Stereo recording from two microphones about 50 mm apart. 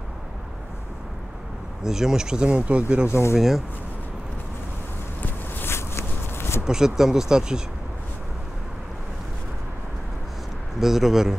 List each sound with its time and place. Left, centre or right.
1.8 s speech: centre
3.1 s speech: left
3.3 s speech: centre
5.7 s a sound: left
6.6 s speech: centre
10.8 s a man's voice: centre